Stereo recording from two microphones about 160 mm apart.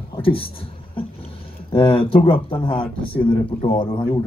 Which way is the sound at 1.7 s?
35° left (ahead or behind).